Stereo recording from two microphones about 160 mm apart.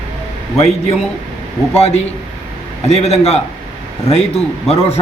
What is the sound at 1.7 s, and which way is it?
A man's voice, 40° left (ahead or behind).